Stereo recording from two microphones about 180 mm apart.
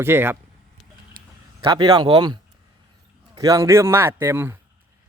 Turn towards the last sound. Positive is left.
turn(degrees=-15)  # may be behind; listen again after turning